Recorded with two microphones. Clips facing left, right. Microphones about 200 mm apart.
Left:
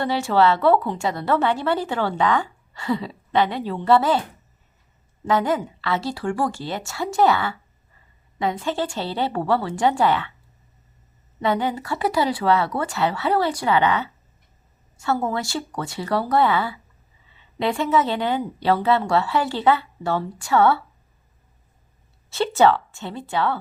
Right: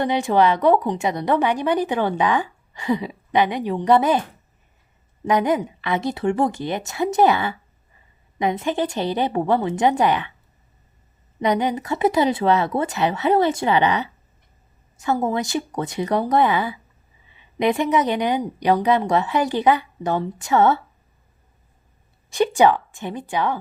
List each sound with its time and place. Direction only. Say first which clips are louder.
0.0 s a woman's voice: right 1 dB; 15° right (ahead or behind)
5.2 s speech: right 2 dB; 20° right (ahead or behind)
11.3 s a woman's voice: right 2 dB; 15° right (ahead or behind)
22.3 s a woman's voice: right 1 dB; 15° right (ahead or behind)